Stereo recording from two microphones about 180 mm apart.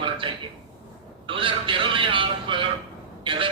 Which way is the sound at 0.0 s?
30° right (ahead or behind).